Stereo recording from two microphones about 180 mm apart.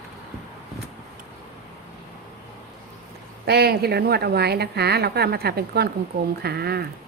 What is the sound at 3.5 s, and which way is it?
A woman's voice, 60° right (ahead or behind).